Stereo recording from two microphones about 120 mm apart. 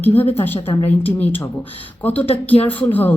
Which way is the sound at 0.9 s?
15° left (ahead or behind).